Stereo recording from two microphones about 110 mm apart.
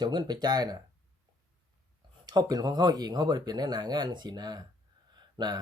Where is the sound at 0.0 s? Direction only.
40° right (ahead or behind).